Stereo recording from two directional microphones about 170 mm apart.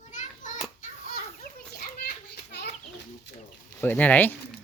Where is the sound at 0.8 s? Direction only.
60° left (ahead or behind).